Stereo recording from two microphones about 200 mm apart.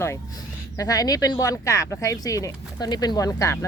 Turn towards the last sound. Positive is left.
turn(degrees=15)  # may be behind; listen again after turning